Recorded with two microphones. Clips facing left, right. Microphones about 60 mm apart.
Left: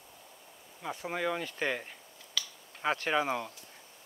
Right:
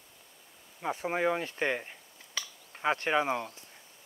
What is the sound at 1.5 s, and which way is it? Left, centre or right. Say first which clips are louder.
Speech: right 2 dB; centre.